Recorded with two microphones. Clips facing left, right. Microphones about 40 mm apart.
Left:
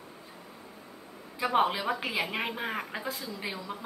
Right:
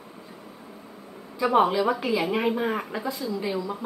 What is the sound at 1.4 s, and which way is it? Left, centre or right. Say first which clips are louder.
Speech: right 6 dB; centre.